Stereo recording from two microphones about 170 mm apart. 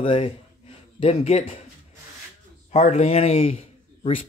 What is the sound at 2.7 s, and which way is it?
Speech, 40° left (ahead or behind).